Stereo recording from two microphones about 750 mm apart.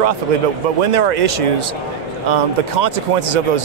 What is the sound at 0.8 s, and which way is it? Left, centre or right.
A man's voice, right.